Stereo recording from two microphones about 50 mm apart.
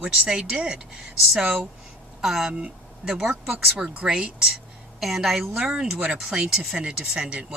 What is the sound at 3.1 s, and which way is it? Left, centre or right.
Speech, centre.